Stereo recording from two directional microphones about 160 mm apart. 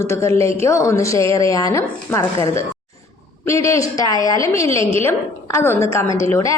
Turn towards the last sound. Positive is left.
turn(degrees=20)  # may be behind; listen again after turning